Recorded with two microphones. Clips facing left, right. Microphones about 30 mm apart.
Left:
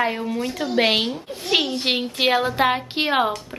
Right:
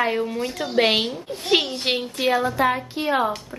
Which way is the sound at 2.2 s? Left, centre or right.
Left.